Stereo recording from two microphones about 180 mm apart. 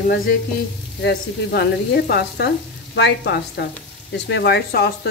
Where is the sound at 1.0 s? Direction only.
70° left (ahead or behind).